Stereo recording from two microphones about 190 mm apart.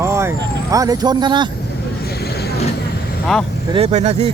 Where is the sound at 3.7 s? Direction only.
35° right (ahead or behind).